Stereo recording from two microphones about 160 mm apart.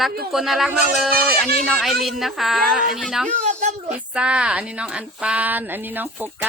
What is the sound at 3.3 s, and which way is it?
Speech, 50° right (ahead or behind).